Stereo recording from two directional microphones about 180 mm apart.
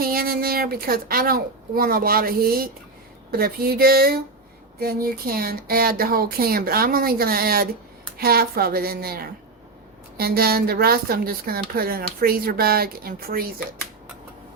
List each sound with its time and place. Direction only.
0.0 s a woman's voice: 55° right (ahead or behind)